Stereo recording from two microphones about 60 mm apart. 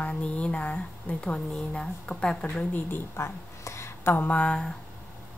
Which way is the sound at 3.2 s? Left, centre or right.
Left.